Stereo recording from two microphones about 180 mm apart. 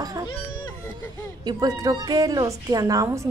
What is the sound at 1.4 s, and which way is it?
A woman's voice, 20° right (ahead or behind).